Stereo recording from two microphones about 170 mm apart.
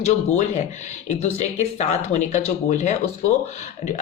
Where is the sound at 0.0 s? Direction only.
40° left (ahead or behind).